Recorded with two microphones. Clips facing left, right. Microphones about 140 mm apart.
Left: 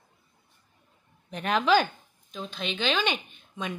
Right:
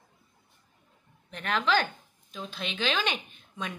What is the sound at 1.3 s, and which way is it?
Speech, 15° left (ahead or behind).